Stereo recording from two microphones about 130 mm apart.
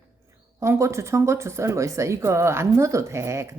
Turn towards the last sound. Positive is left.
turn(degrees=-20)  # may be behind; listen again after turning